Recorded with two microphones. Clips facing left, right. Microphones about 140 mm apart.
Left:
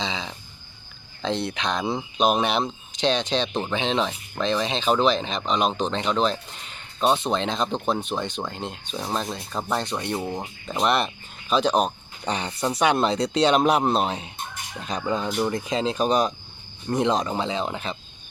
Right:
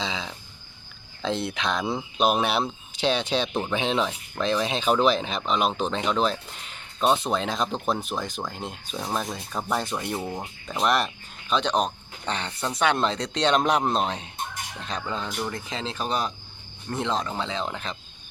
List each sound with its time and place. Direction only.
0.0 s a sound: centre (ahead or behind)
1.2 s speech: 5° right (ahead or behind)
10.2 s speech: 5° left (ahead or behind)
15.3 s speech: 30° left (ahead or behind)
15.5 s speech: 20° left (ahead or behind)